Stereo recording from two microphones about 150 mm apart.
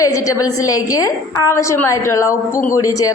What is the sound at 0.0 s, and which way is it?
A woman's voice, 25° left (ahead or behind).